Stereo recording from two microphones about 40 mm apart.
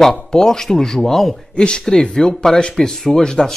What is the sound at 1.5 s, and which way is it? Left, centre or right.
Speech, centre.